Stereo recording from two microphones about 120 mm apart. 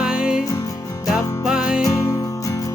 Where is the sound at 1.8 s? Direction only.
25° left (ahead or behind).